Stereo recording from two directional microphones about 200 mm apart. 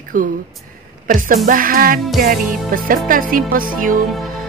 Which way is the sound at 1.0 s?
45° right (ahead or behind).